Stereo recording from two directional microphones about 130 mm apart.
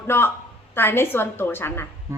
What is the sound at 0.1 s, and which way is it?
A woman's voice, 15° left (ahead or behind).